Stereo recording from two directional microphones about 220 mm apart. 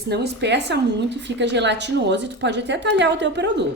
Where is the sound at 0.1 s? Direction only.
50° right (ahead or behind).